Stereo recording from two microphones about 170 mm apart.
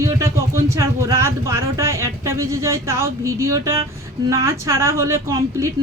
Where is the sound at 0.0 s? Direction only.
15° right (ahead or behind).